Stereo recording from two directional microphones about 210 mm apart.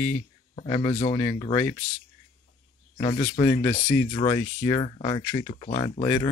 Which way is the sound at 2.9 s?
25° left (ahead or behind).